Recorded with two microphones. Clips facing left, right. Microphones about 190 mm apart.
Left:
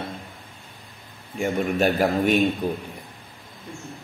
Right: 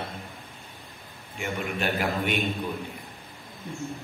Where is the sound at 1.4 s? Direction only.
40° left (ahead or behind).